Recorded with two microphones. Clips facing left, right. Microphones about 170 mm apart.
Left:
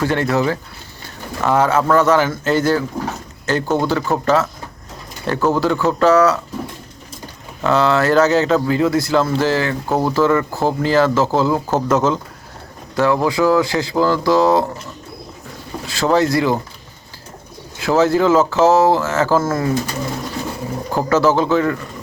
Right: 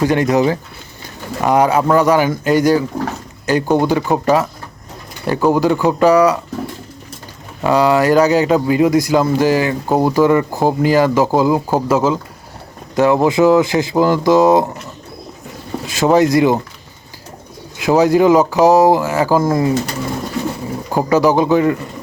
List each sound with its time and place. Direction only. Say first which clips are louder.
0.0 s speech: right 4 dB; 15° right (ahead or behind)
7.6 s speech: right 3 dB; 15° right (ahead or behind)
13.0 s speech: right 4 dB; 20° right (ahead or behind)
15.9 s speech: right 4 dB; 20° right (ahead or behind)
17.7 s speech: right 3 dB; 15° right (ahead or behind)
20.9 s speech: right 2 dB; 15° right (ahead or behind)